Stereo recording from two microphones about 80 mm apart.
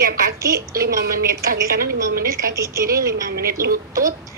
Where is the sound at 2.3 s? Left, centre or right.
Right.